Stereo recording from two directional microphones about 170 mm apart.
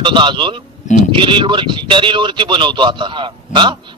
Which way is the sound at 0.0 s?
30° right (ahead or behind).